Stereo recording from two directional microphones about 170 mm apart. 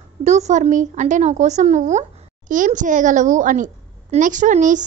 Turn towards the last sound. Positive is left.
turn(degrees=-50)  # may be behind; listen again after turning